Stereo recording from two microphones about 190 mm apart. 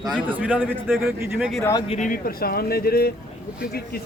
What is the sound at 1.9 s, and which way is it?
Speech, 40° left (ahead or behind).